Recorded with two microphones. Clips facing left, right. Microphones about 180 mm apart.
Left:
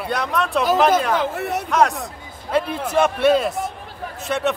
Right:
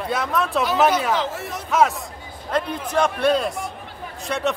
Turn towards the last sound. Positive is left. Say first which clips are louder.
# left 2 dB
turn(degrees=0)  # may be behind; listen again after turning